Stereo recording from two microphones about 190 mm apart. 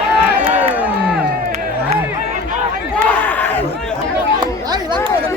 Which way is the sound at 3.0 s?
10° left (ahead or behind).